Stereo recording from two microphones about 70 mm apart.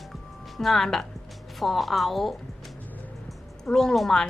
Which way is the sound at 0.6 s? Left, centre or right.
Centre.